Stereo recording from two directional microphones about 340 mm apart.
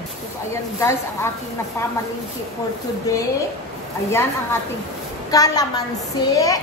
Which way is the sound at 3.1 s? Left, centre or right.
Centre.